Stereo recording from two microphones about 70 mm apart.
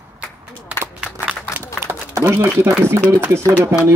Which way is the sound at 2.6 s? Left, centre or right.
Right.